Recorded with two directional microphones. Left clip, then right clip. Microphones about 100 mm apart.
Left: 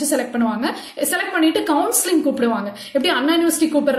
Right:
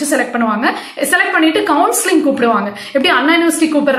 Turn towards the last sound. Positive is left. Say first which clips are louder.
# right 5 dB
turn(degrees=30)  # may be behind; listen again after turning